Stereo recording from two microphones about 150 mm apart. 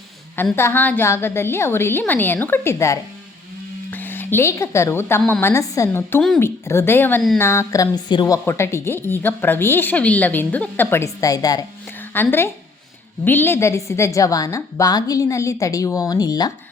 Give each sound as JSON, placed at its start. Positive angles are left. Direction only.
{"t": 0.5, "sound": "a woman's voice", "side_deg": 15}